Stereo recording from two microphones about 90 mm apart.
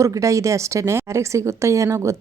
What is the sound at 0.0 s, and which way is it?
A woman's voice, 35° right (ahead or behind).